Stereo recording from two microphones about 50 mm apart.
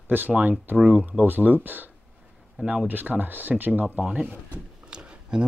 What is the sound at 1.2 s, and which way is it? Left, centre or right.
Speech, right.